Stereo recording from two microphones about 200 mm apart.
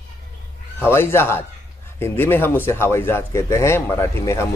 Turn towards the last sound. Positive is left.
turn(degrees=15)  # may be behind; listen again after turning